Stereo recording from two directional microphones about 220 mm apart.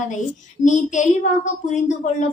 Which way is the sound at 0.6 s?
35° left (ahead or behind).